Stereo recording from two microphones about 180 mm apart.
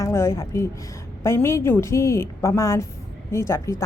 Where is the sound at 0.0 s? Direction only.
15° left (ahead or behind).